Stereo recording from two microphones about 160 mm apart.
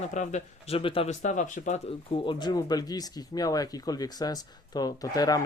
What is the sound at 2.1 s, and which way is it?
Speech, 30° left (ahead or behind).